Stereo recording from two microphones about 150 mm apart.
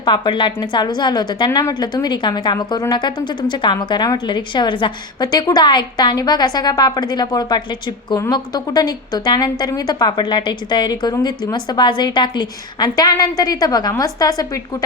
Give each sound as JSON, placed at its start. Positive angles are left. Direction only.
{"t": 0.0, "sound": "a woman's voice", "side_deg": 30}